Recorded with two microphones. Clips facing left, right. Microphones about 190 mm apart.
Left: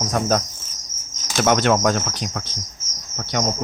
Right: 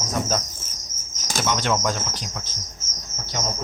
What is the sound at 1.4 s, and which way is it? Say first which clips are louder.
Speech: left 7 dB; 55° left (ahead or behind).